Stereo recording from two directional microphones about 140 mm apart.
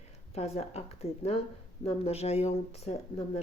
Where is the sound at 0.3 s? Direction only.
50° left (ahead or behind).